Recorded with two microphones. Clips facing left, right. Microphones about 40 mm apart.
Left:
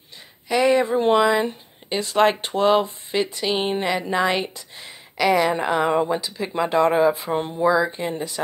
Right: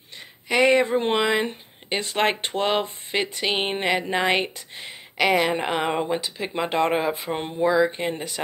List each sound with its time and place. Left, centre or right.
0.5 s a woman's voice: right